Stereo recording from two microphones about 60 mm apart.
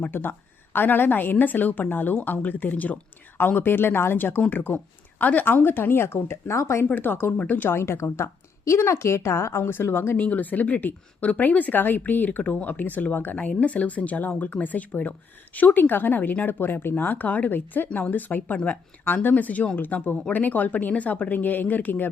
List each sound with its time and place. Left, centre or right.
0.0 s speech: left
6.9 s speech: left
7.7 s a woman's voice: left
10.2 s speech: left
19.0 s speech: left